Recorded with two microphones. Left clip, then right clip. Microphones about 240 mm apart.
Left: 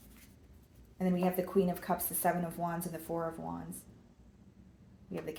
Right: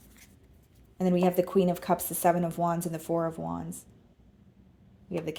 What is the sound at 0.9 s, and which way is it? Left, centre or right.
Speech, right.